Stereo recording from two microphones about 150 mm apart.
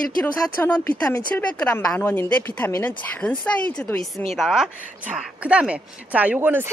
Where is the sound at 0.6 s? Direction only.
15° left (ahead or behind).